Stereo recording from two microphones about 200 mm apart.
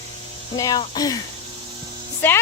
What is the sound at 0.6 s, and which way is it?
Speech, 20° left (ahead or behind).